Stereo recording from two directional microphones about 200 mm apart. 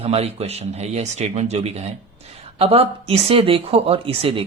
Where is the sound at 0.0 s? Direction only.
30° right (ahead or behind).